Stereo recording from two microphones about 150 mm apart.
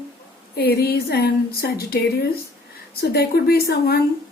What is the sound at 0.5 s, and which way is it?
A woman's voice, 90° left.